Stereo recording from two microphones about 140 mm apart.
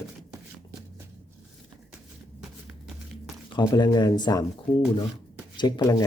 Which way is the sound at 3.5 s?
30° left (ahead or behind).